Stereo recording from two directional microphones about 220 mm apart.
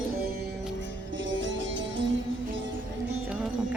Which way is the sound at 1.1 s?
60° right (ahead or behind).